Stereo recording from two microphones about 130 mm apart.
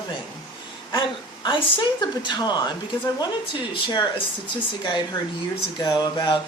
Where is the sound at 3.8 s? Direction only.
35° left (ahead or behind).